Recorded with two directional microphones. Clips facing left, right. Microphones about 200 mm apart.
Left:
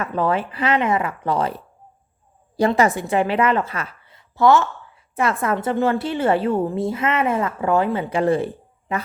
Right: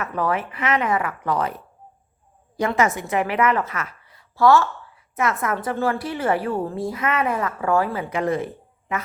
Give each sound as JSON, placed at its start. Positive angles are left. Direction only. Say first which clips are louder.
{"t": 0.0, "sound": "a woman's voice", "louder": "left 3 dB", "side_deg": 25}
{"t": 5.1, "sound": "a woman's voice", "louder": "left 2 dB", "side_deg": 30}
{"t": 8.1, "sound": "speech", "louder": "left 4 dB", "side_deg": 30}